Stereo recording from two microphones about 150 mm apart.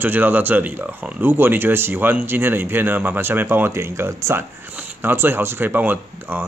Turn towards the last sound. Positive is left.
turn(degrees=-15)  # may be behind; listen again after turning